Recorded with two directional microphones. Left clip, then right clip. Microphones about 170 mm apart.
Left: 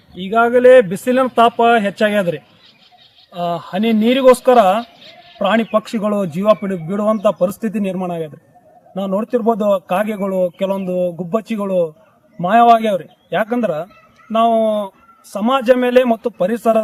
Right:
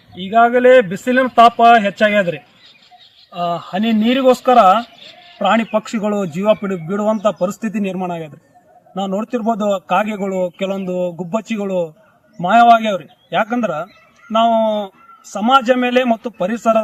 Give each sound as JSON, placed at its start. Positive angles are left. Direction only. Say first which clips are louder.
{"t": 0.2, "sound": "speech", "louder": "even", "side_deg": 30}